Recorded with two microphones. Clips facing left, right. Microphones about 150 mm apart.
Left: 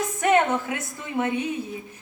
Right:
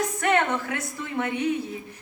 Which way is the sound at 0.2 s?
15° left (ahead or behind).